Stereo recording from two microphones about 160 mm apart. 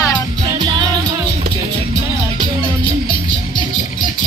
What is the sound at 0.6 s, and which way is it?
Music, 30° right (ahead or behind).